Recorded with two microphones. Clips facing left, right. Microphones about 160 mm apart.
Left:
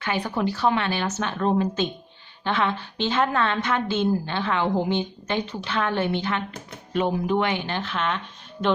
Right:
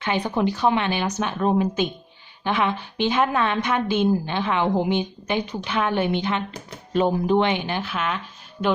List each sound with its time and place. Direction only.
0.0 s a woman's voice: 20° right (ahead or behind)
6.9 s a woman's voice: 35° right (ahead or behind); by 8.2 s 5° right (ahead or behind)